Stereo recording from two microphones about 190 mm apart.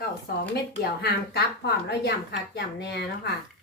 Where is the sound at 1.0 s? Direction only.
60° left (ahead or behind).